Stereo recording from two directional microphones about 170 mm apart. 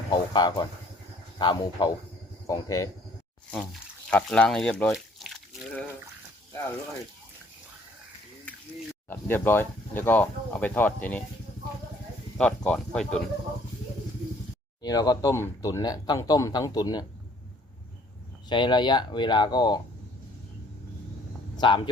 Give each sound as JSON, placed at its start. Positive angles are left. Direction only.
{"t": 0.1, "sound": "speech", "side_deg": 25}
{"t": 3.5, "sound": "speech", "side_deg": 0}
{"t": 9.0, "sound": "speech", "side_deg": 10}
{"t": 12.4, "sound": "speech", "side_deg": 5}
{"t": 14.8, "sound": "speech", "side_deg": 20}
{"t": 18.4, "sound": "speech", "side_deg": 25}
{"t": 21.6, "sound": "speech", "side_deg": 25}